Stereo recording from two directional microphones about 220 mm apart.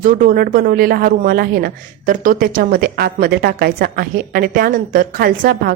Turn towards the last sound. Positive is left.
turn(degrees=-40)  # may be behind; listen again after turning